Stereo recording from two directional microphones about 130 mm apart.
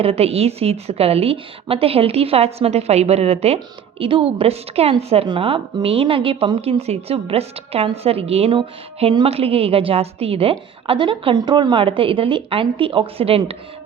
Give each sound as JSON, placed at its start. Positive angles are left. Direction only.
{"t": 0.0, "sound": "a woman's voice", "side_deg": -50}